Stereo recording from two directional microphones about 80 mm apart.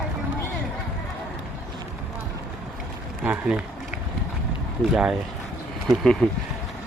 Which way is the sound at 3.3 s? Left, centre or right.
Centre.